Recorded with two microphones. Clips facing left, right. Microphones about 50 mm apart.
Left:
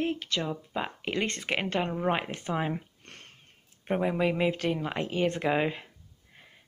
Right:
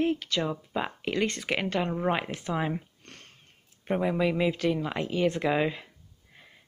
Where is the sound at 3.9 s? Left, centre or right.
Centre.